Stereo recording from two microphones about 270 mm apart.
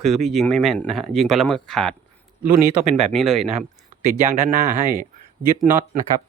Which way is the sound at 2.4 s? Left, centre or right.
Right.